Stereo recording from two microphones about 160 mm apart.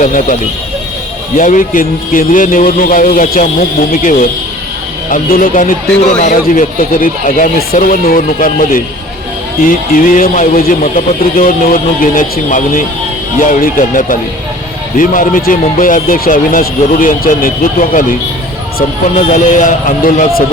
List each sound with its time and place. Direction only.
0.0 s speech: 55° left (ahead or behind)
1.4 s speech: 55° left (ahead or behind)
19.0 s speech: 50° left (ahead or behind)